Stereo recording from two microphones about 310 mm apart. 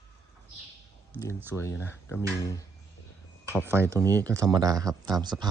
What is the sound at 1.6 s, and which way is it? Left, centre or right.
Speech, centre.